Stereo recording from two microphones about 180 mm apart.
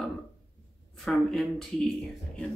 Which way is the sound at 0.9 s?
Centre (ahead or behind).